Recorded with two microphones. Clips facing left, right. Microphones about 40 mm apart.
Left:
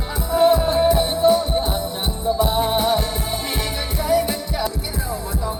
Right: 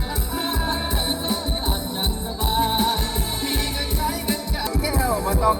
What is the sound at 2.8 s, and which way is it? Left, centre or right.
Music, centre.